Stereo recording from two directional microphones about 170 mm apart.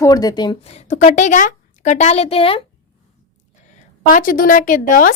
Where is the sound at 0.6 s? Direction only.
40° left (ahead or behind).